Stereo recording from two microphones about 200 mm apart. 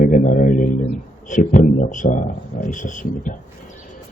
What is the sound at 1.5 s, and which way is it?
A man's voice, 40° left (ahead or behind).